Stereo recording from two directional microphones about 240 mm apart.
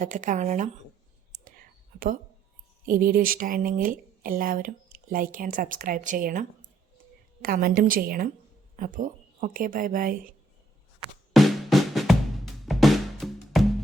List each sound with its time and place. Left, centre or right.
0.0 s speech: right
2.8 s speech: right
7.4 s speech: right
11.3 s music: centre
12.6 s drum: centre